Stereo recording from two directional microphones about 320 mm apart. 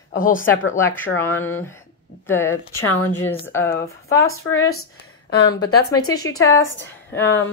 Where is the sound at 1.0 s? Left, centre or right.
Centre.